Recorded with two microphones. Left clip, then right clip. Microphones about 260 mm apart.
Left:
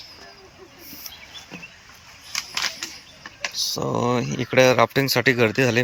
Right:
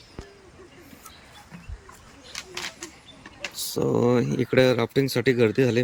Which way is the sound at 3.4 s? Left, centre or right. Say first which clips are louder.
Left 3 dB; centre.